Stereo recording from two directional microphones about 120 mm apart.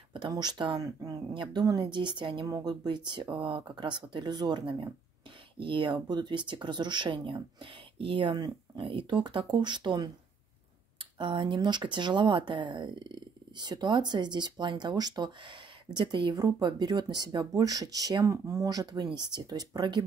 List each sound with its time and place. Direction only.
0.3 s speech: 35° right (ahead or behind)
0.8 s speech: 30° right (ahead or behind)
1.3 s speech: 40° right (ahead or behind)